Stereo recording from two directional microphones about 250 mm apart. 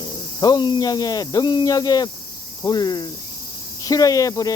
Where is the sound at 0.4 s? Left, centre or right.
Centre.